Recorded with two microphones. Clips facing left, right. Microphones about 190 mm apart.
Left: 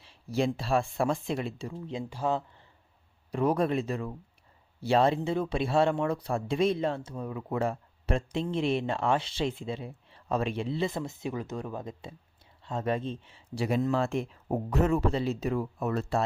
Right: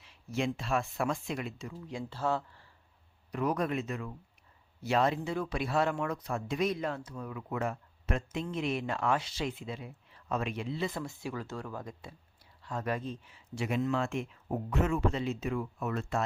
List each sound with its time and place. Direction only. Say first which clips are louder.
0.0 s speech: left 5 dB; 30° left (ahead or behind)
3.3 s speech: left 5 dB; 30° left (ahead or behind)